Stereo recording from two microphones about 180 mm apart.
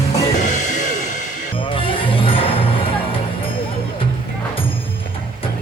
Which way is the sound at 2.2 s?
30° left (ahead or behind).